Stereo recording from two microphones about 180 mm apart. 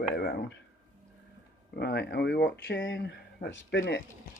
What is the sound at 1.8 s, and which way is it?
Speech, 65° left (ahead or behind).